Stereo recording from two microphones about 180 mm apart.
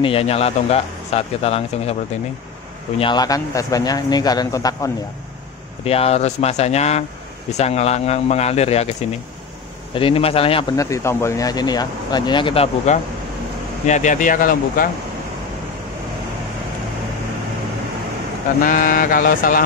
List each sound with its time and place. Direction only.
0.0 s speech: 30° left (ahead or behind)
3.0 s speech: 25° left (ahead or behind)
5.9 s speech: 35° left (ahead or behind)
9.9 s speech: 30° left (ahead or behind)
10.8 s speech: 15° left (ahead or behind); by 14.9 s 50° left (ahead or behind)
18.6 s speech: 50° left (ahead or behind)